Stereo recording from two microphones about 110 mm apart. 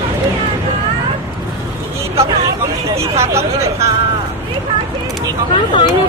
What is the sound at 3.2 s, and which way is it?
Speech, 25° right (ahead or behind).